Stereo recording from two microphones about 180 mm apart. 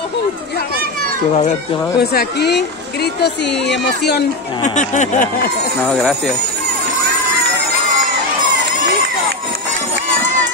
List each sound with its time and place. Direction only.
2.0 s a woman's voice: 65° left (ahead or behind)
4.6 s speech: 40° left (ahead or behind)
5.9 s speech: centre (ahead or behind)